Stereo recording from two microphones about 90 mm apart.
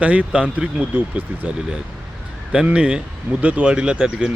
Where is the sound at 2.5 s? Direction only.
10° right (ahead or behind).